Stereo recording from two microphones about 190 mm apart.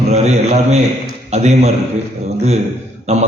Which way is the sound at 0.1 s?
35° right (ahead or behind).